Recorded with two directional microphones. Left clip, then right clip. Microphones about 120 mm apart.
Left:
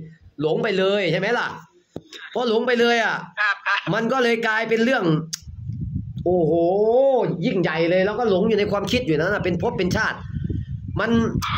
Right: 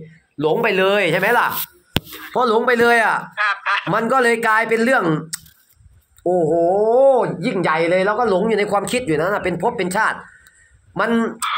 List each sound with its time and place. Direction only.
0.4 s a man's voice: 20° left (ahead or behind)
3.3 s a man's voice: 25° right (ahead or behind)
3.9 s a man's voice: 35° left (ahead or behind)
6.3 s a man's voice: 30° left (ahead or behind)